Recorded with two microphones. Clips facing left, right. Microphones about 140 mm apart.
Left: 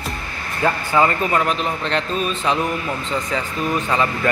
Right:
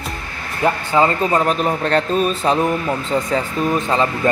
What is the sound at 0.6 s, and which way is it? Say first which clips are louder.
Speech: right 2 dB; 25° right (ahead or behind).